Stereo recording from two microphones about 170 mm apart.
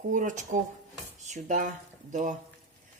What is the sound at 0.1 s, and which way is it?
Speech, 50° right (ahead or behind).